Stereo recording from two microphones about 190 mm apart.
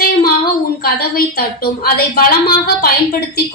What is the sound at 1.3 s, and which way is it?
Speech, 55° left (ahead or behind).